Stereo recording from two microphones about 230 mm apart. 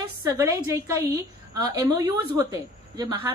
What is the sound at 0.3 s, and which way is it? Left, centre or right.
A woman's voice, centre.